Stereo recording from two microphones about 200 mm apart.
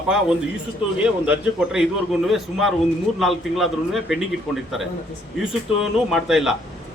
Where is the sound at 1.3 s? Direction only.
5° right (ahead or behind).